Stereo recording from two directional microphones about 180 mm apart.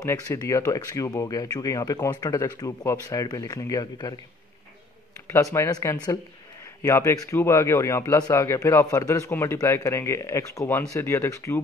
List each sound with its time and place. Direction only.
0.0 s speech: 20° left (ahead or behind)
5.3 s speech: 15° left (ahead or behind)